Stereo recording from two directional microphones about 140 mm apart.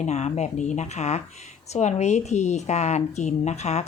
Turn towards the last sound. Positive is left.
turn(degrees=55)  # may be behind; listen again after turning